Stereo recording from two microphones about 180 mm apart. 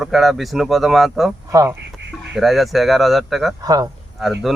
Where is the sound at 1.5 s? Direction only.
20° right (ahead or behind).